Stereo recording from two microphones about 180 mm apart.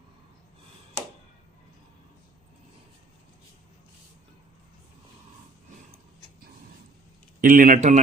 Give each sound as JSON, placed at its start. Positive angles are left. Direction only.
{"t": 7.4, "sound": "a man's voice", "side_deg": -50}